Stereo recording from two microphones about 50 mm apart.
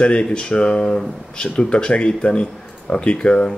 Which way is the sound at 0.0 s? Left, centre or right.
Left.